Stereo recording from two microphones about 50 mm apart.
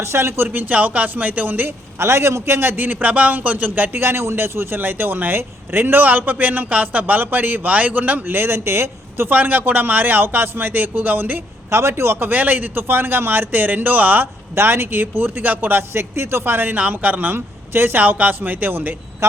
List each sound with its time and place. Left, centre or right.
0.0 s a man's voice: right
2.0 s a man's voice: right
3.9 s a man's voice: right
8.3 s speech: right
9.3 s a man's voice: right
11.7 s speech: right
12.3 s a man's voice: right
14.5 s a man's voice: right
16.9 s a man's voice: right
17.3 s a man's voice: right